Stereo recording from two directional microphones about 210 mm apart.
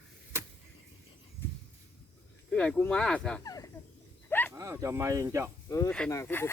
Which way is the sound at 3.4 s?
15° left (ahead or behind).